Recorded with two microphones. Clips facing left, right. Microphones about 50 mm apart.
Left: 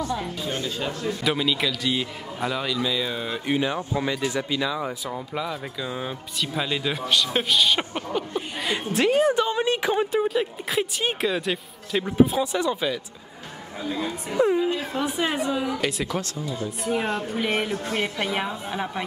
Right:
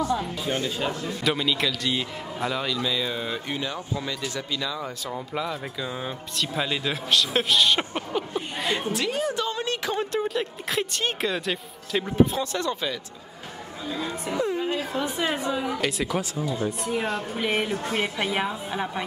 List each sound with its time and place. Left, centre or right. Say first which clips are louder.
0.0 s speech: right 2 dB; centre
1.0 s speech: left 3 dB; centre
3.4 s speech: left 6 dB; centre
5.1 s speech: even; centre
8.9 s a woman's voice: left 7 dB; left; by 14.1 s centre
14.4 s speech: left 7 dB; left
15.0 s a woman's voice: left 2 dB; centre
15.5 s speech: left 1 dB; centre